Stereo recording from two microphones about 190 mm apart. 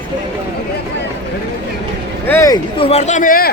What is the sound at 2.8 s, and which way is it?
Speech, 35° left (ahead or behind).